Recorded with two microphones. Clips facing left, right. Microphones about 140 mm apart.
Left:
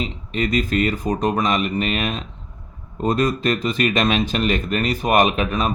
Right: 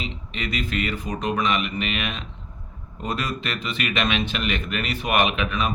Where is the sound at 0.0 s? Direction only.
40° left (ahead or behind).